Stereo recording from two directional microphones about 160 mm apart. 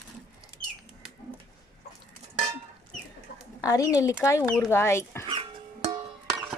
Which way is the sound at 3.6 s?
20° left (ahead or behind).